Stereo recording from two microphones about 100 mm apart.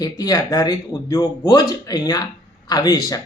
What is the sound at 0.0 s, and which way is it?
Speech, 40° left (ahead or behind).